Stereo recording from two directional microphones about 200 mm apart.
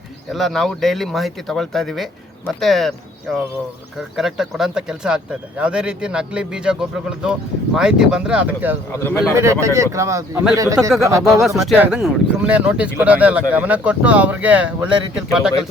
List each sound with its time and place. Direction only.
0.3 s speech: centre (ahead or behind)
8.9 s a man's voice: 15° left (ahead or behind)
9.3 s speech: 15° right (ahead or behind)
11.4 s speech: centre (ahead or behind)